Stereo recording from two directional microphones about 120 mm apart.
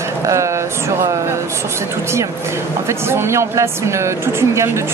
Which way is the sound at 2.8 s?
20° right (ahead or behind).